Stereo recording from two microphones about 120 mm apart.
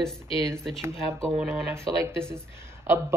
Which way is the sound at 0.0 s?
Centre (ahead or behind).